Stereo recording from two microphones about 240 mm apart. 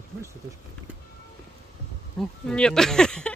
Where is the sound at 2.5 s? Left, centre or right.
Centre.